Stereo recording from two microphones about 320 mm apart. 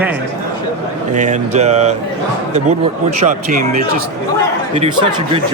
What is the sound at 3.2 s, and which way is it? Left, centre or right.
A man's voice, right.